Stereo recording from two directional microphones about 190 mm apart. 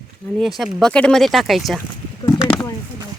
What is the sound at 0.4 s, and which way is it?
Speech, centre (ahead or behind).